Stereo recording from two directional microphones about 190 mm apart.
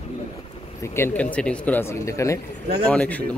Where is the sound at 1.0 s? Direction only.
10° left (ahead or behind).